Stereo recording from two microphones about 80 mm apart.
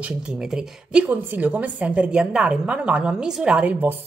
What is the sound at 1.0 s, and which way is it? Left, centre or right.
Speech, right.